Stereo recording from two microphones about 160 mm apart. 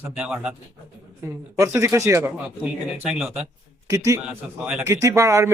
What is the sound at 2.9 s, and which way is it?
Speech, 5° right (ahead or behind).